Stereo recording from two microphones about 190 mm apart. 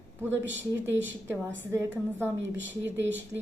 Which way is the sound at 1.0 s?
75° right (ahead or behind).